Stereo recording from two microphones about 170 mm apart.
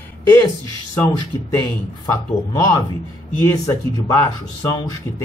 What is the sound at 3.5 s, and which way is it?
Speech, 20° left (ahead or behind).